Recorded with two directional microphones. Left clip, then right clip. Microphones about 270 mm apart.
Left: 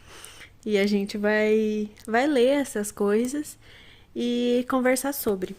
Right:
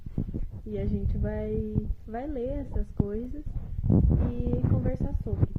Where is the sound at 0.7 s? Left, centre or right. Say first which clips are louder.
Left 11 dB; left.